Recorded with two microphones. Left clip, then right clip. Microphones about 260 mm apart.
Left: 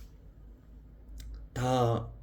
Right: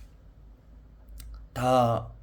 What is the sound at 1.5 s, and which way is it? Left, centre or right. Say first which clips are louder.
Speech: right 6 dB; right.